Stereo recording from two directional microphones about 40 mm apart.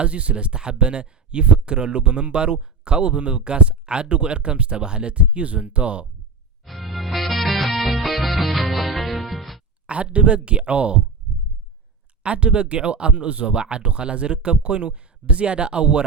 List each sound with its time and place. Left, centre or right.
0.0 s speech: right
6.7 s music: centre
9.8 s speech: right
12.2 s speech: right